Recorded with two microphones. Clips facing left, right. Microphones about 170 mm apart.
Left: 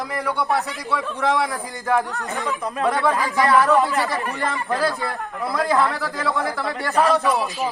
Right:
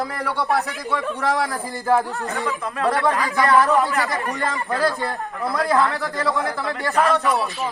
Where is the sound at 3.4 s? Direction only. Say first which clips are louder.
Even; centre (ahead or behind).